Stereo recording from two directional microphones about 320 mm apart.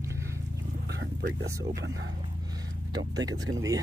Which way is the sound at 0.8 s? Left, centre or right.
Right.